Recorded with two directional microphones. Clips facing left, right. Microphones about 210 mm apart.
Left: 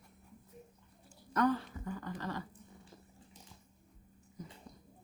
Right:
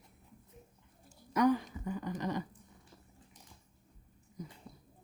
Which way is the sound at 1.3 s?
15° right (ahead or behind).